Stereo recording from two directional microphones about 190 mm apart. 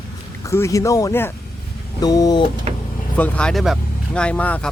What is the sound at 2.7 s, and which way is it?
Vehicle, 35° right (ahead or behind).